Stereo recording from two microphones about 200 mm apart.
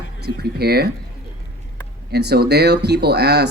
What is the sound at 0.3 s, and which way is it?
Speech, 50° right (ahead or behind).